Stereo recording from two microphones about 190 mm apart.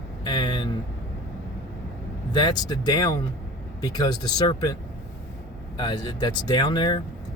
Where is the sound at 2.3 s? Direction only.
20° left (ahead or behind).